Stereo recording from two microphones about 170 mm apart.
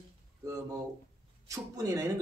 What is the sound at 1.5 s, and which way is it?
Speech, 20° right (ahead or behind).